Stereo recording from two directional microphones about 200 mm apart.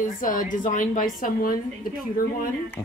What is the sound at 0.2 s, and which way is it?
A woman's voice, 40° left (ahead or behind).